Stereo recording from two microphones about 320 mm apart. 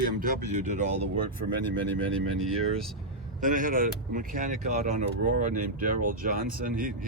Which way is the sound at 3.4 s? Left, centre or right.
Right.